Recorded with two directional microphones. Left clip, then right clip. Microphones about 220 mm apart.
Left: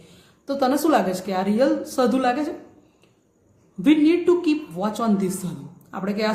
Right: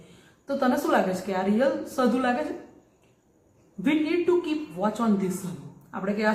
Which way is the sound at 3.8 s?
45° left (ahead or behind).